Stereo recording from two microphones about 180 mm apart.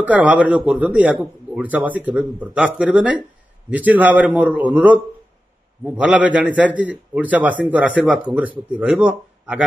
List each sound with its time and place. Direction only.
0.0 s a man's voice: 10° right (ahead or behind)